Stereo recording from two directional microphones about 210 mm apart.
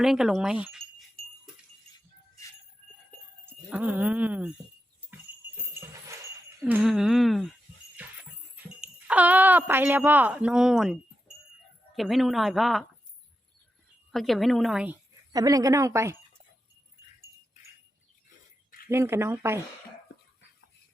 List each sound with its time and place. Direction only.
0.0 s speech: centre (ahead or behind)
3.4 s speech: 5° right (ahead or behind)
6.6 s jingle bell: 10° right (ahead or behind)
7.9 s speech: 5° right (ahead or behind)
11.9 s jingle bell: centre (ahead or behind)
14.1 s jingle bell: centre (ahead or behind)
15.3 s a woman's voice: 15° right (ahead or behind)
18.9 s a woman's voice: 10° right (ahead or behind)